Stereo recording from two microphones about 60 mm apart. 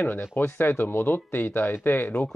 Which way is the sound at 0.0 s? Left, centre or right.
Left.